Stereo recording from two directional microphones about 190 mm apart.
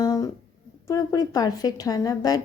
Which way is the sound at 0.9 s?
20° left (ahead or behind).